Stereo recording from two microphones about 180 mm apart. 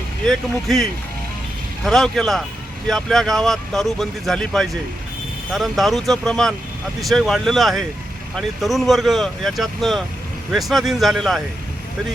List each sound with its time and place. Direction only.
0.3 s speech: centre (ahead or behind)